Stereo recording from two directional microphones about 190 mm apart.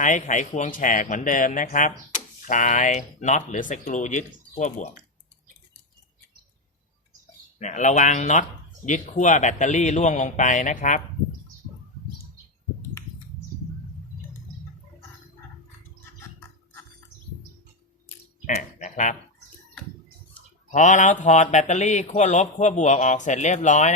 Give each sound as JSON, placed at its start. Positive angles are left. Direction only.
{"t": 0.0, "sound": "speech", "side_deg": 40}
{"t": 7.6, "sound": "speech", "side_deg": 40}
{"t": 18.4, "sound": "a sound", "side_deg": 40}
{"t": 20.7, "sound": "speech", "side_deg": 40}